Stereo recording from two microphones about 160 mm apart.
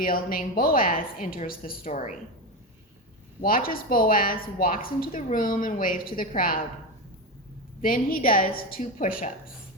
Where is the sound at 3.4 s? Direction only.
65° left (ahead or behind).